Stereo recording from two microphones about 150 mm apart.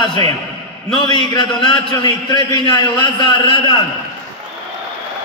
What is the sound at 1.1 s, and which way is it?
A man's voice, 30° left (ahead or behind).